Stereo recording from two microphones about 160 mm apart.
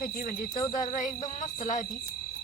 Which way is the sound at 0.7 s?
55° left (ahead or behind).